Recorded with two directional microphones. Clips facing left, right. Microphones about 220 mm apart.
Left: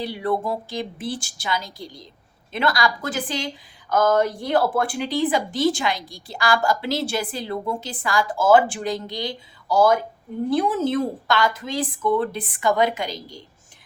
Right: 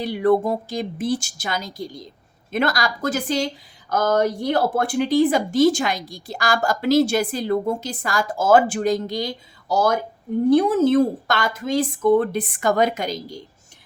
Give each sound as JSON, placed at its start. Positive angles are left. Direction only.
{"t": 0.0, "sound": "speech", "side_deg": -45}